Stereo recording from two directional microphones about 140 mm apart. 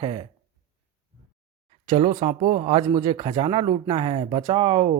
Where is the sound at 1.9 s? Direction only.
40° right (ahead or behind).